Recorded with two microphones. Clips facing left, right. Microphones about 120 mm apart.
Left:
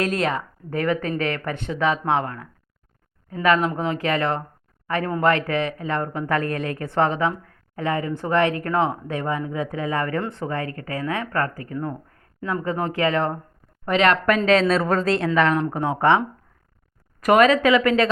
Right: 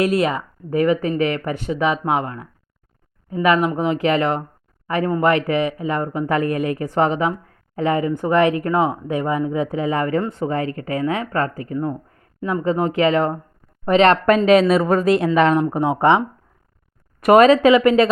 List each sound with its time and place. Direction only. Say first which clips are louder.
0.0 s speech: right 5 dB; 10° right (ahead or behind)
13.8 s speech: right 5 dB; 25° right (ahead or behind)